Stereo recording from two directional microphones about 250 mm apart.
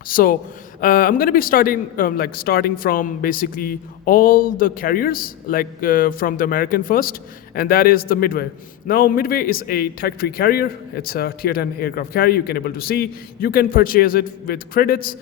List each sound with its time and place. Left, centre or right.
0.1 s a man's voice: left